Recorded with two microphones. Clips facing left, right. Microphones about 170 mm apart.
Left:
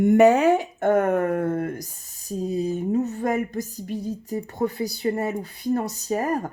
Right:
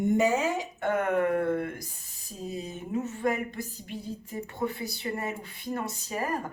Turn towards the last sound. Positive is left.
turn(degrees=45)  # may be behind; listen again after turning